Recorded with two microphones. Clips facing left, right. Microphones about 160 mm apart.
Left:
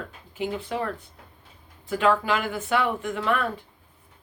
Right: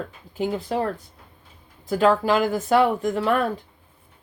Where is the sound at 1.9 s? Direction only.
40° right (ahead or behind).